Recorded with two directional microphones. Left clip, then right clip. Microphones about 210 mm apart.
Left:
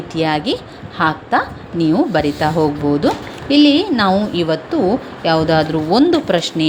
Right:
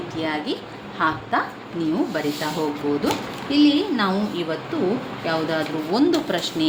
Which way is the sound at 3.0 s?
35° left (ahead or behind).